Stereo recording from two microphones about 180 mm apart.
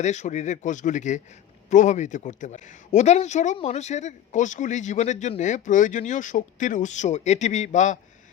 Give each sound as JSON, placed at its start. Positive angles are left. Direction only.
{"t": 0.0, "sound": "speech", "side_deg": 40}